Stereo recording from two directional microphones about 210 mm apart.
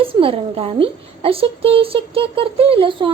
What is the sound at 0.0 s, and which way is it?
A child's voice, 25° right (ahead or behind).